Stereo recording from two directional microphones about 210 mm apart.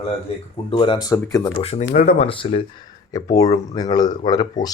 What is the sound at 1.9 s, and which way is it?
Speech, 45° left (ahead or behind).